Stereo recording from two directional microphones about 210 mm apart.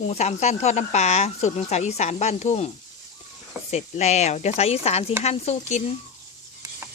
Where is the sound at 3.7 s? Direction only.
30° left (ahead or behind).